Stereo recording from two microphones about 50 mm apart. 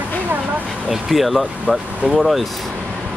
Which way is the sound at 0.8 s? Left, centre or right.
Centre.